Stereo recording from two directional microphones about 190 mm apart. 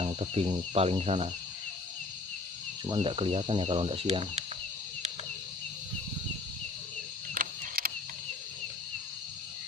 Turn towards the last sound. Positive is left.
turn(degrees=-50)  # may be behind; listen again after turning